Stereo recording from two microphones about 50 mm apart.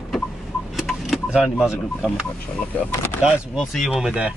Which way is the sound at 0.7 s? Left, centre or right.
Centre.